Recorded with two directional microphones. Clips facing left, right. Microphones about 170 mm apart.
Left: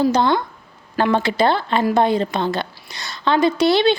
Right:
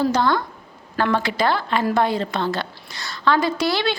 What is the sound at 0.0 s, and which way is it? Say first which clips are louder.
A woman's voice: left 3 dB; 20° left (ahead or behind).